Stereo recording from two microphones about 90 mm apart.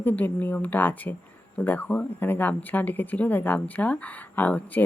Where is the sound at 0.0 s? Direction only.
20° left (ahead or behind).